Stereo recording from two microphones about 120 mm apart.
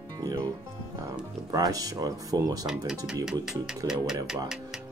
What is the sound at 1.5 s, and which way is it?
Speech, 30° right (ahead or behind).